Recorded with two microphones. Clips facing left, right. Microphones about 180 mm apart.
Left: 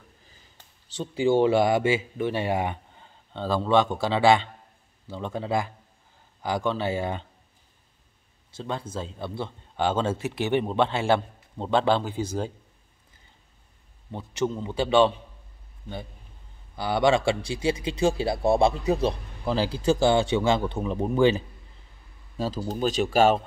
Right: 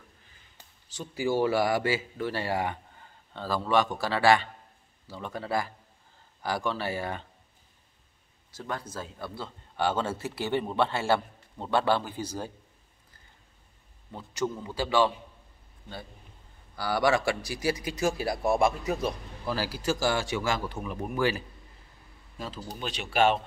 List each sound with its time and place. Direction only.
0.9 s speech: 25° left (ahead or behind)
8.5 s speech: 25° left (ahead or behind)
14.1 s speech: 25° left (ahead or behind)
16.7 s speech: 20° left (ahead or behind)
22.7 s speech: 40° left (ahead or behind)